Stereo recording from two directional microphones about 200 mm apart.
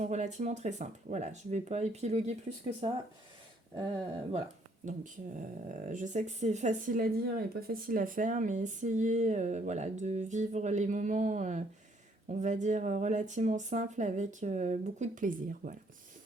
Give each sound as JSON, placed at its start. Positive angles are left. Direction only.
{"t": 0.0, "sound": "speech", "side_deg": -35}
{"t": 5.9, "sound": "speech", "side_deg": -40}